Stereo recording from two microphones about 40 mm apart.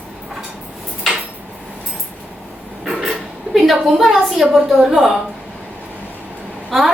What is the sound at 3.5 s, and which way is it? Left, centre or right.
A woman's voice, centre.